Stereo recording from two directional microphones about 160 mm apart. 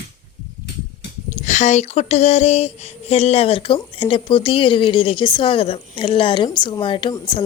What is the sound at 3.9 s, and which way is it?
Speech, 35° left (ahead or behind).